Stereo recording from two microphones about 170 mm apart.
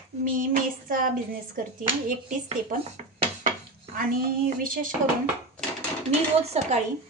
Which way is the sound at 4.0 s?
55° right (ahead or behind).